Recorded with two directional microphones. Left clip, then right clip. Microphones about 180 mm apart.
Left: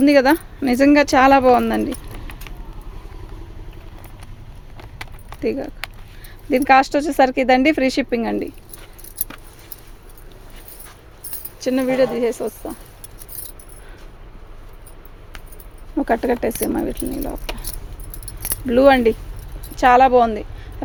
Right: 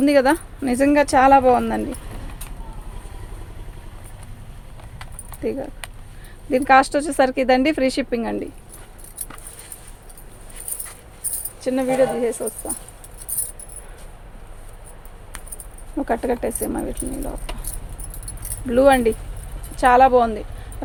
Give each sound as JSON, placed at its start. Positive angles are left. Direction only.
{"t": 0.0, "sound": "speech", "side_deg": 35}
{"t": 4.9, "sound": "clip-clop", "side_deg": 45}
{"t": 6.5, "sound": "speech", "side_deg": 35}
{"t": 11.6, "sound": "speech", "side_deg": 50}
{"t": 16.0, "sound": "speech", "side_deg": 45}